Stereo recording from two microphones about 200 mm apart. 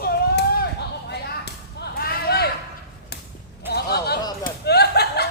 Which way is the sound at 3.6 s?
55° left (ahead or behind).